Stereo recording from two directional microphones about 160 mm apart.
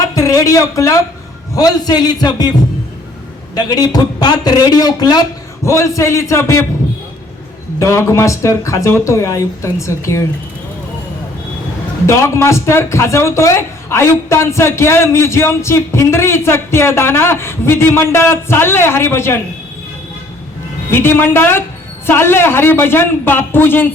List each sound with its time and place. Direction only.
0.1 s a sound: 20° left (ahead or behind)
1.5 s speech: 25° left (ahead or behind)
3.5 s speech: 25° left (ahead or behind)
7.8 s speech: 15° left (ahead or behind)
12.0 s a man's voice: 15° left (ahead or behind)
20.9 s a man's voice: 15° left (ahead or behind)